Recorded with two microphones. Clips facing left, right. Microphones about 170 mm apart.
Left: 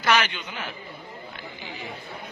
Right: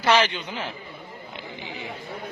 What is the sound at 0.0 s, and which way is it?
Speech, 30° right (ahead or behind).